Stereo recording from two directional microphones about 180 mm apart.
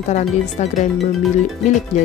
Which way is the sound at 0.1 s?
40° left (ahead or behind).